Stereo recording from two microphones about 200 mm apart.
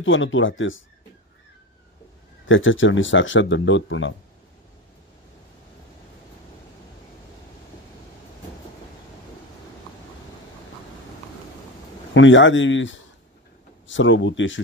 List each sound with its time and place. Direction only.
0.0 s speech: 70° left (ahead or behind)
2.4 s speech: 75° left (ahead or behind)
12.1 s speech: 70° left (ahead or behind)